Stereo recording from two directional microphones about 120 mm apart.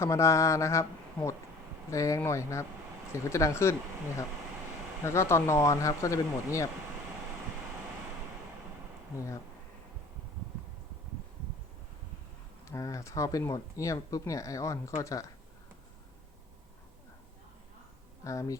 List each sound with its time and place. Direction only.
0.0 s speech: 25° left (ahead or behind)
5.0 s speech: 20° left (ahead or behind)
9.1 s speech: 25° left (ahead or behind)
12.6 s speech: 25° left (ahead or behind)
18.2 s speech: 25° left (ahead or behind)